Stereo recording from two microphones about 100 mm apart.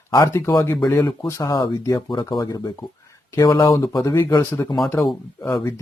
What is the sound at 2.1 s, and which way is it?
Speech, 50° left (ahead or behind).